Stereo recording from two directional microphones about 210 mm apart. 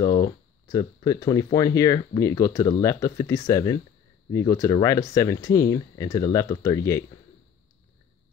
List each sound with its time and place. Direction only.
0.0 s speech: 20° left (ahead or behind)